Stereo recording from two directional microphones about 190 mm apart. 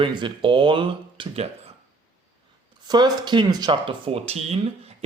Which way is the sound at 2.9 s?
20° right (ahead or behind).